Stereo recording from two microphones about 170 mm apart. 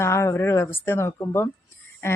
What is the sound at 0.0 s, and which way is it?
A woman's voice, 15° left (ahead or behind).